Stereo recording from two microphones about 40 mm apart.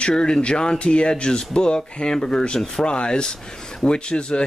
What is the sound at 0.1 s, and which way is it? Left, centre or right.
Speech, left.